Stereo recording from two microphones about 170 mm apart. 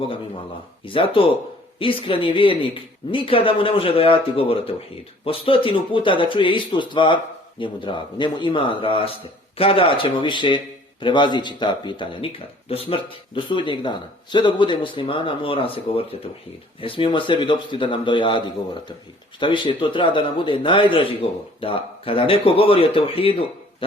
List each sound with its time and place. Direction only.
0.9 s a man's voice: 30° left (ahead or behind)